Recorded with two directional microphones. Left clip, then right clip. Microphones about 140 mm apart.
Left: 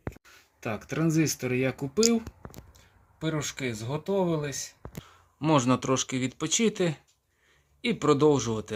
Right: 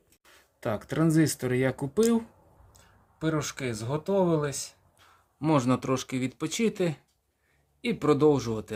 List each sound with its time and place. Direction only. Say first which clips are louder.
0.6 s speech: right 2 dB; 15° right (ahead or behind)